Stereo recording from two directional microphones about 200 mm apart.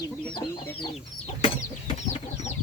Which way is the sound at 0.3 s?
25° left (ahead or behind).